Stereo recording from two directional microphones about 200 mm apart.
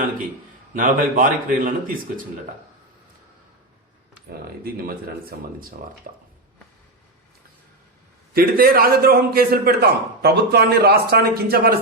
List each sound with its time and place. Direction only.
0.7 s a man's voice: 45° right (ahead or behind)
4.3 s a man's voice: 50° right (ahead or behind)
8.3 s a man's voice: 50° right (ahead or behind)